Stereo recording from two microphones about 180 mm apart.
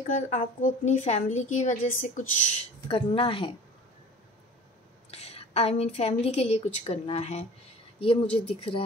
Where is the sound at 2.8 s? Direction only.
30° left (ahead or behind).